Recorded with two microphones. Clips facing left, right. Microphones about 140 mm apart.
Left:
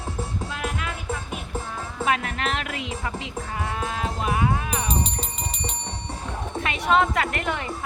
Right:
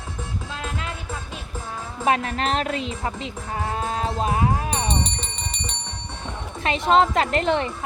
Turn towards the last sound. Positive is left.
turn(degrees=-30)  # may be behind; listen again after turning